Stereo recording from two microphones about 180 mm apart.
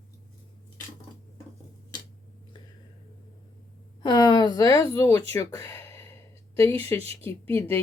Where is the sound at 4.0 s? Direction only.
25° left (ahead or behind).